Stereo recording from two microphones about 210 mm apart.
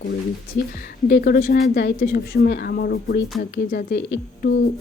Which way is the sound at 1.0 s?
50° left (ahead or behind).